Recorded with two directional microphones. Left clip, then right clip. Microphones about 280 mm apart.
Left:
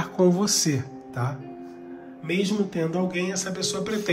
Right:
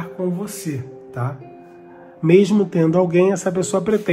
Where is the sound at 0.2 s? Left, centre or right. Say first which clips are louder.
Left 5 dB; centre.